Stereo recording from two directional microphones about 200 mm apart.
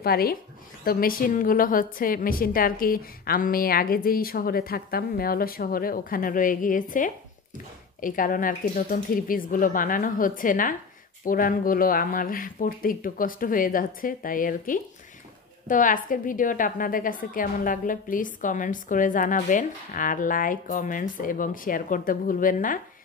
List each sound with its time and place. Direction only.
0.0 s a woman's voice: 50° left (ahead or behind)